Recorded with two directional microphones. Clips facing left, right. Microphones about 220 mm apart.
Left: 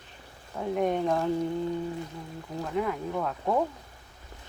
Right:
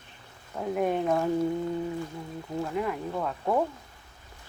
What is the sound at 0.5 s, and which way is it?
Speech, centre (ahead or behind).